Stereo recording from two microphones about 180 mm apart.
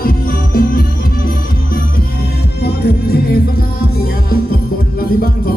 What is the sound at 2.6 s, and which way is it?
Music, 60° left (ahead or behind).